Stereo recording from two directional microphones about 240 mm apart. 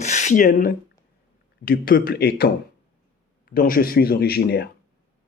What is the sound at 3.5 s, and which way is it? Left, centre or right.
Speech, left.